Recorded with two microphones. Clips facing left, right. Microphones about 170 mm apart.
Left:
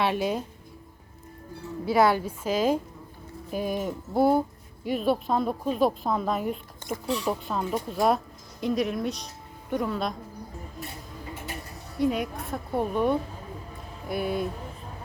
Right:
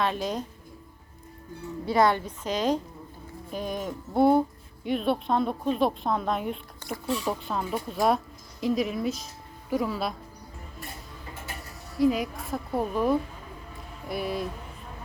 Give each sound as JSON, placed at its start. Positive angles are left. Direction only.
{"t": 0.0, "sound": "speech", "side_deg": 10}
{"t": 1.8, "sound": "a woman's voice", "side_deg": 5}
{"t": 11.7, "sound": "a woman's voice", "side_deg": 0}